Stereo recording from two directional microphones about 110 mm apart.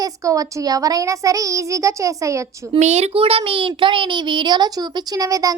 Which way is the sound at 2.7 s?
85° right.